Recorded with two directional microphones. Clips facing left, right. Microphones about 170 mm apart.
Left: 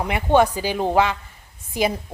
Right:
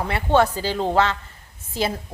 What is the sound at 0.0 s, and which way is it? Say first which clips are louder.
A woman's voice: left 1 dB; 15° left (ahead or behind).